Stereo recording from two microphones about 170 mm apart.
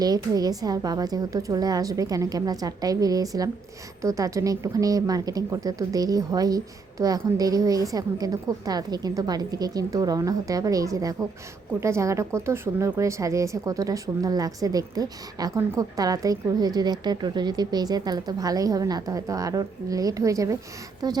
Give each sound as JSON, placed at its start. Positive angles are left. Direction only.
{"t": 0.0, "sound": "speech", "side_deg": -20}